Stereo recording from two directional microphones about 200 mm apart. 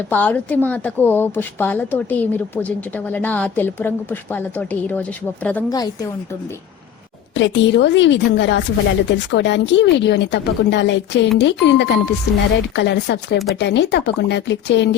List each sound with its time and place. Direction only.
0.1 s a woman's voice: 10° left (ahead or behind)
5.7 s a woman's voice: 20° left (ahead or behind)
7.3 s a woman's voice: 65° left (ahead or behind)